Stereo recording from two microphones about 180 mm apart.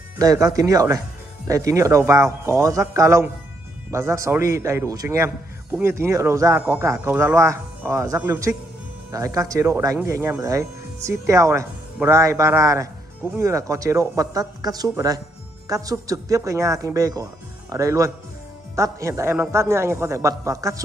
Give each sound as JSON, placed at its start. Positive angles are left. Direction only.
{"t": 0.2, "sound": "speech", "side_deg": -20}